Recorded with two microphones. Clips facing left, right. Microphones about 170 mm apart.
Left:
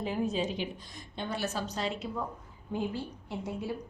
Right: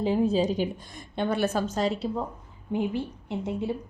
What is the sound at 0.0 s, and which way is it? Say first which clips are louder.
A woman's voice: right 8 dB; 30° right (ahead or behind).